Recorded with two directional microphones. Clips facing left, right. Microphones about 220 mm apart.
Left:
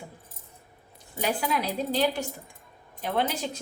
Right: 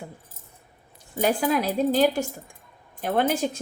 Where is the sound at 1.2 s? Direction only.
45° right (ahead or behind).